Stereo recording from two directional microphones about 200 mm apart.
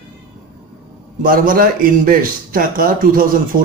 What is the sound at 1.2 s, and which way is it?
A man's voice, 45° right (ahead or behind).